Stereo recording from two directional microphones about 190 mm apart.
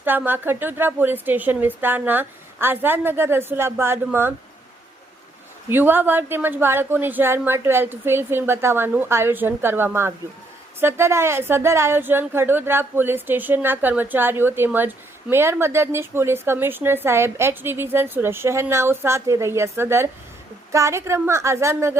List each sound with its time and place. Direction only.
0.0 s a woman's voice: 10° right (ahead or behind)
5.6 s a woman's voice: 10° right (ahead or behind)